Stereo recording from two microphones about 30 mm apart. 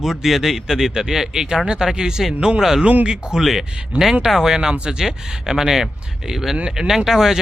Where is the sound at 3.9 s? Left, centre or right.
Right.